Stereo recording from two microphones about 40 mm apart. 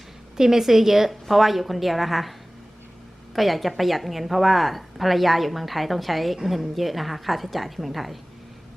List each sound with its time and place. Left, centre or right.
0.3 s a woman's voice: centre
3.3 s a woman's voice: centre